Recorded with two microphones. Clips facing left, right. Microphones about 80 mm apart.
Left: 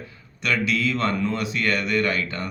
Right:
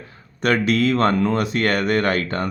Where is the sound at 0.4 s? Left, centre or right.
Right.